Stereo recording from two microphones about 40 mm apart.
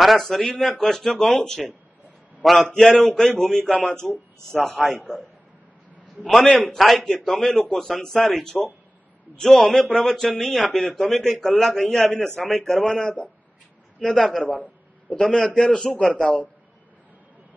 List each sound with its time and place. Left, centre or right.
0.0 s a man's voice: centre
0.5 s speech: centre
1.3 s a man's voice: left
2.6 s speech: centre
4.0 s speech: left
4.8 s a man's voice: centre
6.2 s speech: centre
6.7 s a man's voice: centre
12.4 s a man's voice: left
12.6 s speech: centre
14.1 s a man's voice: centre; by 16.4 s left